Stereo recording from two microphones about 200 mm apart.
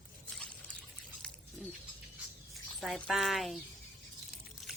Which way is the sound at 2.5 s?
Centre (ahead or behind).